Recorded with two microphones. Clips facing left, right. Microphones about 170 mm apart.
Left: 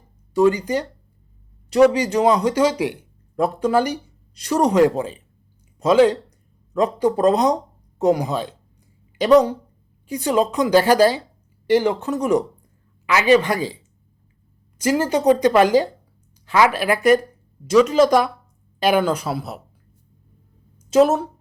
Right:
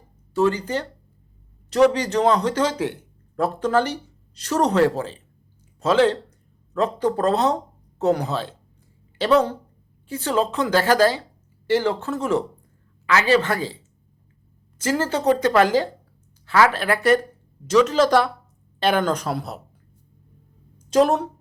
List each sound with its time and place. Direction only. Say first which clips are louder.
0.3 s a woman's voice: left 4 dB; 10° left (ahead or behind)
14.8 s speech: left 4 dB; 15° left (ahead or behind)
20.9 s a woman's voice: left 2 dB; 5° left (ahead or behind)